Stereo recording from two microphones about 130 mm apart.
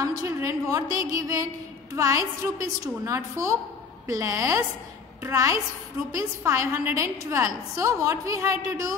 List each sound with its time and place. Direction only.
0.0 s a woman's voice: 25° right (ahead or behind)